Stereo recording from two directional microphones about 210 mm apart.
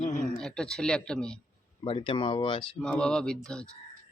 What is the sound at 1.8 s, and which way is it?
Speech, 25° left (ahead or behind).